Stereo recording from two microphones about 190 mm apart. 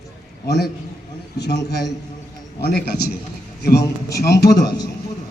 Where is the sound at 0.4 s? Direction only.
60° left (ahead or behind).